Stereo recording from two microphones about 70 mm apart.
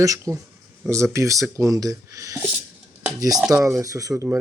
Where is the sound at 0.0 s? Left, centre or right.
Right.